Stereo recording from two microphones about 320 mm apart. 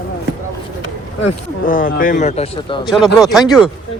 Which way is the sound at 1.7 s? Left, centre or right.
Left.